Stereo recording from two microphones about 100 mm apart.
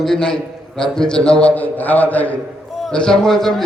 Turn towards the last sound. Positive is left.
turn(degrees=5)  # may be behind; listen again after turning